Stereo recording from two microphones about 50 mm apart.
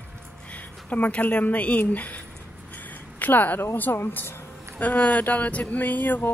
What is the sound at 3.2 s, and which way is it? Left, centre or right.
Speech, left.